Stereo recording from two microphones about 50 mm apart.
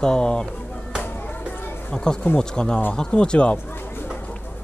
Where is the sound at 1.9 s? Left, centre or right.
Centre.